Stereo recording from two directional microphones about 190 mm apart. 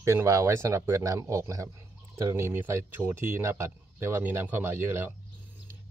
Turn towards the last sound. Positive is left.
turn(degrees=-10)  # may be behind; listen again after turning